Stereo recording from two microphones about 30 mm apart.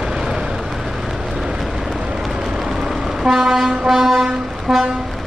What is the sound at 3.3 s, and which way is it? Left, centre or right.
Vehicle, centre.